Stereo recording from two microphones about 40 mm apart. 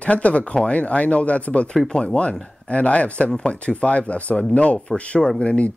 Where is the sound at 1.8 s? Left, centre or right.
Left.